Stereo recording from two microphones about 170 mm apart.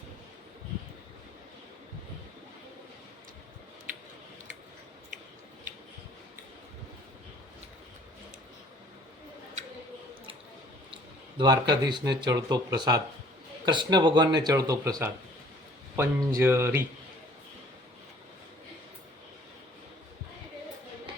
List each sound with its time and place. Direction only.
11.3 s speech: 25° right (ahead or behind)